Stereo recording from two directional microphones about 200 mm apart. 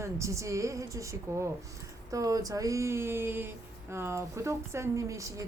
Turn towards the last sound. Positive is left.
turn(degrees=-15)  # may be behind; listen again after turning